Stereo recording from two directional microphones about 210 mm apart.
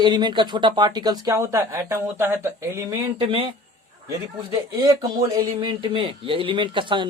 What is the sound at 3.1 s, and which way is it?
Speech, 25° right (ahead or behind).